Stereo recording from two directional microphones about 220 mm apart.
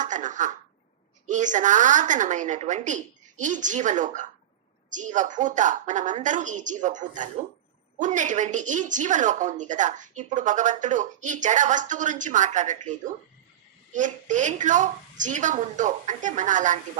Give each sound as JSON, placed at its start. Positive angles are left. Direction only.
{"t": 0.0, "sound": "throat clearing", "side_deg": -35}
{"t": 1.3, "sound": "speech", "side_deg": -35}
{"t": 13.9, "sound": "speech", "side_deg": -35}